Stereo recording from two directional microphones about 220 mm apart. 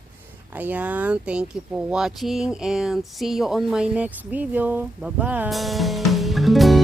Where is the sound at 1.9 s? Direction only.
Centre (ahead or behind).